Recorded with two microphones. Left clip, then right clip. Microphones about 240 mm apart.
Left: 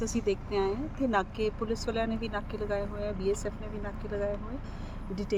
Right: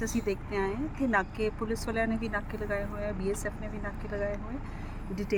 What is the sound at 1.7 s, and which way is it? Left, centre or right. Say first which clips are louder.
Speech: even; centre.